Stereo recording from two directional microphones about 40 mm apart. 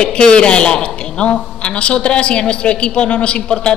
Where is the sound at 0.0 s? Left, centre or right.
Left.